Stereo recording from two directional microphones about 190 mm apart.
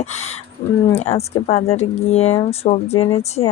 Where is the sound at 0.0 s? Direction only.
35° left (ahead or behind).